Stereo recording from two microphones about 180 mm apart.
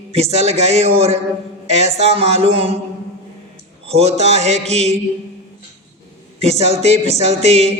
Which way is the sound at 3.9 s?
35° right (ahead or behind).